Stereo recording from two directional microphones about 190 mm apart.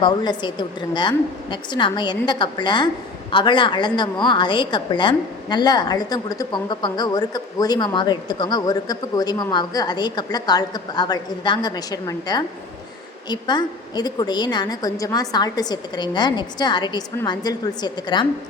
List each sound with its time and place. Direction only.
0.0 s a woman's voice: 25° left (ahead or behind)